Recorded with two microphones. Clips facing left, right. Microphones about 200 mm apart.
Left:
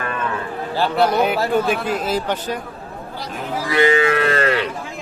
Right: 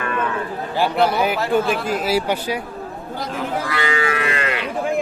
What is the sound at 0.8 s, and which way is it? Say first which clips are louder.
A man's voice: left 1 dB; 5° right (ahead or behind).